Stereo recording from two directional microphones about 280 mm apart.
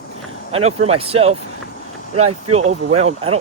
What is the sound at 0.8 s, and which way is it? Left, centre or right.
Speech, right.